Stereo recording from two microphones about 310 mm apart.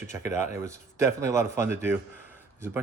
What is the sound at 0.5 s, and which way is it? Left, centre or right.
Speech, centre.